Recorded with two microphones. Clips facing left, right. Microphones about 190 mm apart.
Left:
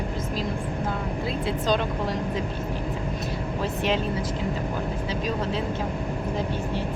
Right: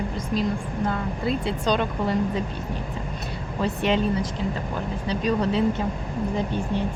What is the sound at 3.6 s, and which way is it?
Speech, 5° left (ahead or behind).